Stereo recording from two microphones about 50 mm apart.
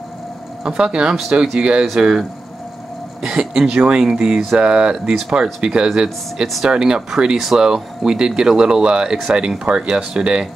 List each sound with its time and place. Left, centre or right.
0.7 s speech: centre
6.4 s speech: centre
6.7 s speech: centre